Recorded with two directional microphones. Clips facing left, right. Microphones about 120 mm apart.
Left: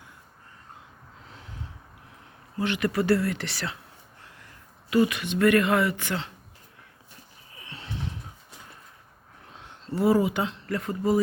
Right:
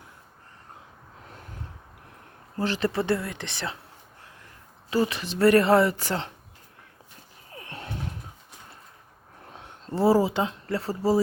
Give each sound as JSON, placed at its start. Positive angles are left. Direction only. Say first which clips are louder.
{"t": 2.6, "sound": "speech", "louder": "even", "side_deg": -35}
{"t": 4.9, "sound": "speech", "louder": "left 3 dB", "side_deg": -30}
{"t": 7.5, "sound": "a sound", "louder": "right 2 dB", "side_deg": -50}
{"t": 9.9, "sound": "speech", "louder": "right 1 dB", "side_deg": -30}